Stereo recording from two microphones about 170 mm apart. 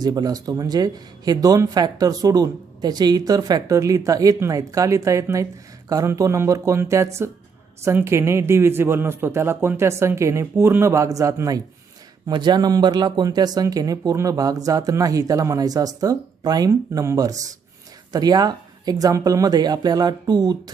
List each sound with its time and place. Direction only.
0.0 s speech: 25° right (ahead or behind)